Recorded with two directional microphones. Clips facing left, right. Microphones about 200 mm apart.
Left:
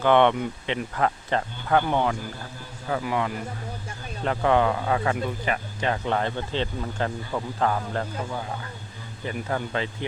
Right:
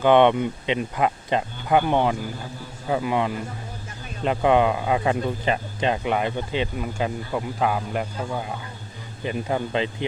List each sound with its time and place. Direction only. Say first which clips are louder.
0.0 s speech: right 3 dB; 15° right (ahead or behind)
9.2 s speech: right 3 dB; 20° right (ahead or behind)